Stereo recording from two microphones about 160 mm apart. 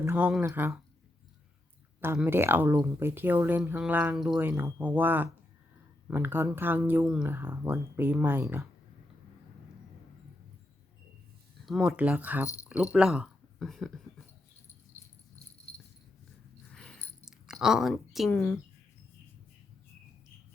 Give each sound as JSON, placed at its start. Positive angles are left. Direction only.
{"t": 0.0, "sound": "a sound", "side_deg": -15}
{"t": 0.4, "sound": "speech", "side_deg": -15}
{"t": 2.2, "sound": "speech", "side_deg": -15}
{"t": 11.6, "sound": "speech", "side_deg": 0}
{"t": 16.7, "sound": "a sound", "side_deg": 5}
{"t": 18.3, "sound": "speech", "side_deg": 15}